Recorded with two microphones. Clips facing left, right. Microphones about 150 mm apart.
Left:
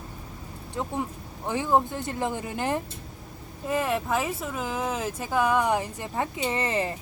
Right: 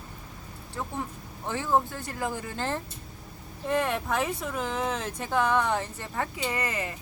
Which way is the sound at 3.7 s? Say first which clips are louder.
Left 1 dB; 5° left (ahead or behind).